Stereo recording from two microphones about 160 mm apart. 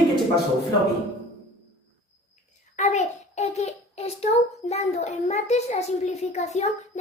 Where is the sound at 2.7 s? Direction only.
50° left (ahead or behind).